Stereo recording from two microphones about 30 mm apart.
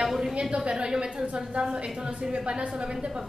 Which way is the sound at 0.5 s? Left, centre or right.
Right.